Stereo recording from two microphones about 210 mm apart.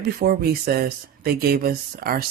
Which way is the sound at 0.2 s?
45° right (ahead or behind).